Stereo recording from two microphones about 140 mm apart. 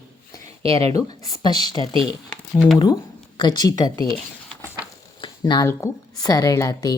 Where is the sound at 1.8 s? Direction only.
35° right (ahead or behind).